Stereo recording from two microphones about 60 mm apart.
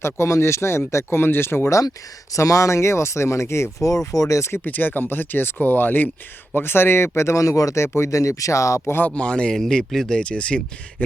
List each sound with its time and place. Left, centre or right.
0.0 s speech: left
2.3 s speech: left
4.6 s speech: left
7.2 s speech: left
7.8 s speech: left
9.0 s speech: centre